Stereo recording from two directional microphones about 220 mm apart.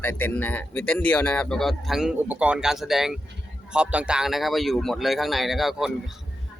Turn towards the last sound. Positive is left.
turn(degrees=0)  # may be behind; listen again after turning